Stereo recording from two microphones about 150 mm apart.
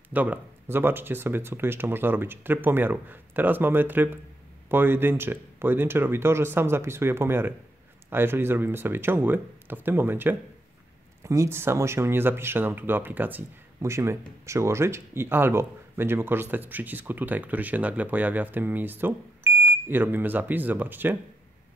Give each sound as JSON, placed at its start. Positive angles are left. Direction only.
{"t": 0.1, "sound": "speech", "side_deg": -10}